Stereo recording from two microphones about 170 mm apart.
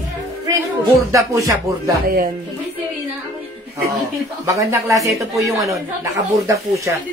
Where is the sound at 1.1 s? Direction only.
20° right (ahead or behind).